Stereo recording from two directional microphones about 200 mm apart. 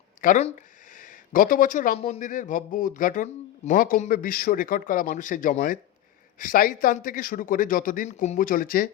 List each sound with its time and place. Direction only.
0.2 s speech: 40° left (ahead or behind)